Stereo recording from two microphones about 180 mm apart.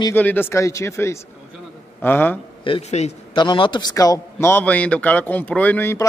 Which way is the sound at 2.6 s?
35° left (ahead or behind).